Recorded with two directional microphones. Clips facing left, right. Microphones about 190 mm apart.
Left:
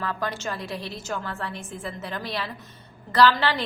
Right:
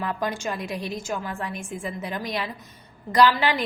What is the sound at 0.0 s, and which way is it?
A woman's voice, 15° right (ahead or behind).